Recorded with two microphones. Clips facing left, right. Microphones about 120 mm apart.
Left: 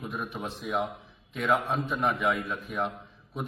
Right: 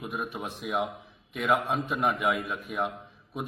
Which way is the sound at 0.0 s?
15° right (ahead or behind).